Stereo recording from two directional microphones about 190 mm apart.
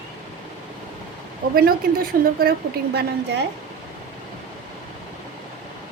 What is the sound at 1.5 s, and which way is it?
A woman's voice, 50° right (ahead or behind).